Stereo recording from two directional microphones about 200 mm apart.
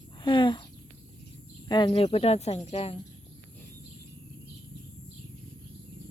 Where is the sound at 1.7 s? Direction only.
20° left (ahead or behind).